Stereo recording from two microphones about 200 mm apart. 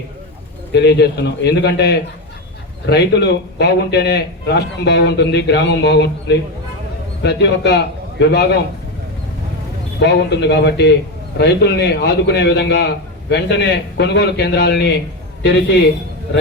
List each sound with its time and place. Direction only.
0.7 s a man's voice: 55° left (ahead or behind)
10.0 s a man's voice: 60° left (ahead or behind)